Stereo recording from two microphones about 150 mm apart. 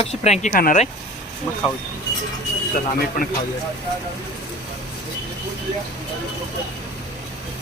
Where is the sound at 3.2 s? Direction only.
70° left (ahead or behind).